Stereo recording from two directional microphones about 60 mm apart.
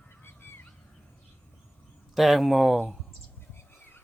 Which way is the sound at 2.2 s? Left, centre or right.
Centre.